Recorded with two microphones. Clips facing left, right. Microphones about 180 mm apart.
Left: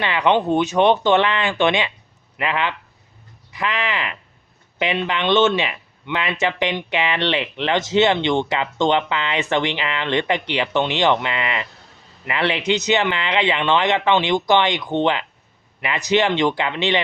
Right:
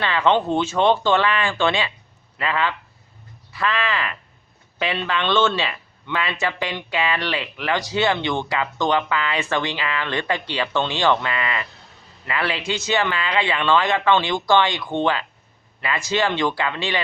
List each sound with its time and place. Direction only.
0.0 s speech: 15° left (ahead or behind)